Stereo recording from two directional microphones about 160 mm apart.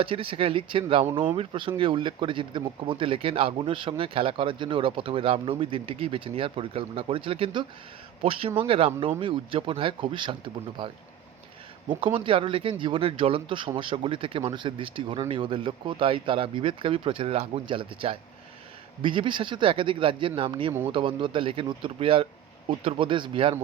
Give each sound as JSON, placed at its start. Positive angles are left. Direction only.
{"t": 0.0, "sound": "speech", "side_deg": -35}